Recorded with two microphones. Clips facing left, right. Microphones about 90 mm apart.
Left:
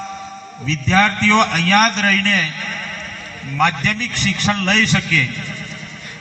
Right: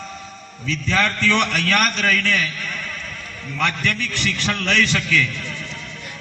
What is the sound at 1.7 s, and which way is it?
Speech, 50° left (ahead or behind).